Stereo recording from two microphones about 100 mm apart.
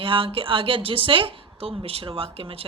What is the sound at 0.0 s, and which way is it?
A woman's voice, 65° right (ahead or behind).